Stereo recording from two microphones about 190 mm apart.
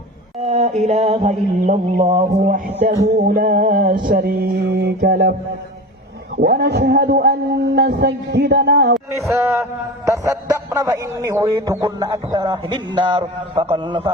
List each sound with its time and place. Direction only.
0.3 s mantra: 35° right (ahead or behind); by 5.3 s 50° right (ahead or behind)
6.3 s speech: 55° right (ahead or behind)
9.3 s a man's voice: 10° right (ahead or behind)